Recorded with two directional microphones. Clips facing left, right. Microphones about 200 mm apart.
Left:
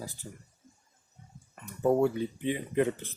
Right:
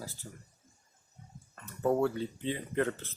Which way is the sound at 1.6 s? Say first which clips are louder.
Left 3 dB; 15° left (ahead or behind).